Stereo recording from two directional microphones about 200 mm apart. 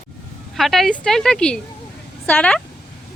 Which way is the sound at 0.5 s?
Centre (ahead or behind).